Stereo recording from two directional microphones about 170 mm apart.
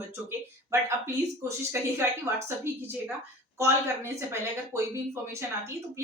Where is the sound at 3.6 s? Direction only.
15° right (ahead or behind).